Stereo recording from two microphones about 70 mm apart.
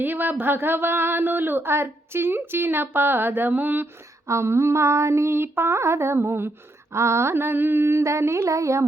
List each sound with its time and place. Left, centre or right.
0.0 s speech: right
4.3 s speech: right